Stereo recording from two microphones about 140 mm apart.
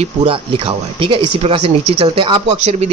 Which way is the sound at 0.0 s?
40° right (ahead or behind).